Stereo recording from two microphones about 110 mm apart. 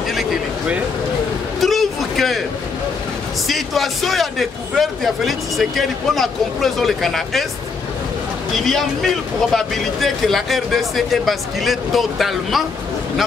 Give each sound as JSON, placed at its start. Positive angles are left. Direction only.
{"t": 0.1, "sound": "speech", "side_deg": 0}
{"t": 1.6, "sound": "a sound", "side_deg": 0}
{"t": 3.4, "sound": "speech", "side_deg": 0}
{"t": 8.5, "sound": "speech", "side_deg": 0}